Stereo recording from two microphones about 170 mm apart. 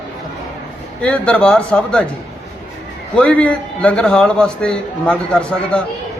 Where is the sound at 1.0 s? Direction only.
5° left (ahead or behind).